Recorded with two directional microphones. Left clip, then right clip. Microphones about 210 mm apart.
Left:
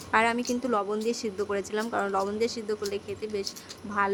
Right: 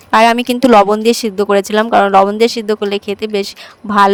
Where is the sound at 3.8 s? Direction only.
30° right (ahead or behind).